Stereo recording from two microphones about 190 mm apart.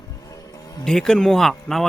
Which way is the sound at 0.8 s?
5° left (ahead or behind).